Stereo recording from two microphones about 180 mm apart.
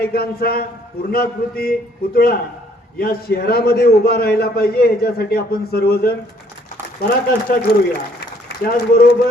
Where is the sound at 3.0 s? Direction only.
60° left (ahead or behind).